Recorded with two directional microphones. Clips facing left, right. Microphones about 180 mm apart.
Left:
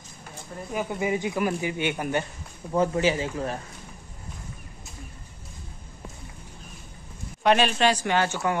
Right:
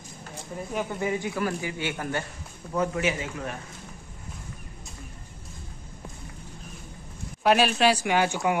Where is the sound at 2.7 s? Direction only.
30° left (ahead or behind).